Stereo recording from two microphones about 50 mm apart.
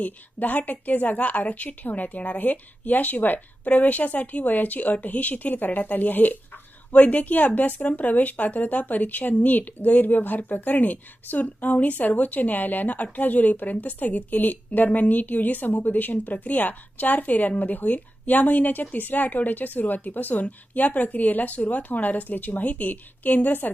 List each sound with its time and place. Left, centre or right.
0.0 s speech: left